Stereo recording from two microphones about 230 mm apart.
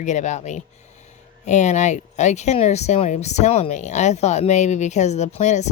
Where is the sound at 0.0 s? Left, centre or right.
Left.